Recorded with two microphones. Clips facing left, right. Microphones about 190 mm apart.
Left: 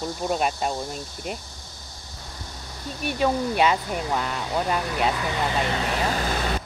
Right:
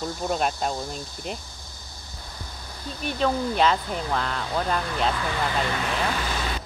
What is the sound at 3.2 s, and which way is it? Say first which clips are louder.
Speech: left 1 dB; 10° left (ahead or behind).